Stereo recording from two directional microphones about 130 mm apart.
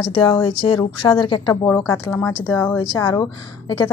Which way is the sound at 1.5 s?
15° left (ahead or behind).